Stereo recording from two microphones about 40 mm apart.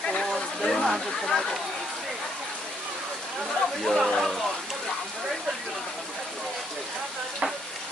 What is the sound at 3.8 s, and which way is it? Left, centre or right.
Speech, centre.